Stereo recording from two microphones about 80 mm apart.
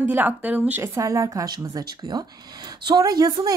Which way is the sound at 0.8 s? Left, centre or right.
Right.